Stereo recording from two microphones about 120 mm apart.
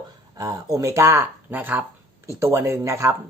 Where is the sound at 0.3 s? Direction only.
30° right (ahead or behind).